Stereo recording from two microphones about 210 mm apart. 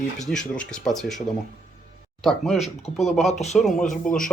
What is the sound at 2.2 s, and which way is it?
Speech, centre (ahead or behind).